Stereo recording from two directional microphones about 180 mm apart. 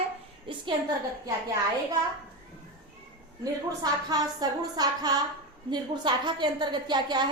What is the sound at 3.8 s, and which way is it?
A woman's voice, 20° right (ahead or behind).